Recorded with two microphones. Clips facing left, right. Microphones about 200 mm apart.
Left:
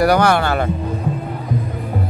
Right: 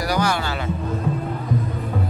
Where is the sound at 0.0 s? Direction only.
60° left (ahead or behind).